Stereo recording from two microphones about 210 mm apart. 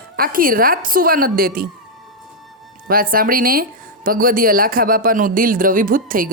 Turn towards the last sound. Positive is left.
turn(degrees=-40)  # may be behind; listen again after turning